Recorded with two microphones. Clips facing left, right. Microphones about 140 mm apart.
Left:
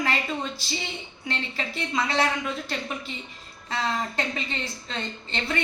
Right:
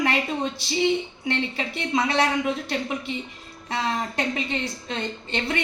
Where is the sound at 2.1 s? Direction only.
20° right (ahead or behind).